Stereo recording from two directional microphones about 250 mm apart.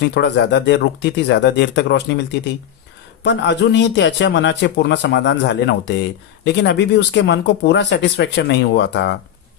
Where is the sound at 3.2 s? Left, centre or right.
Left.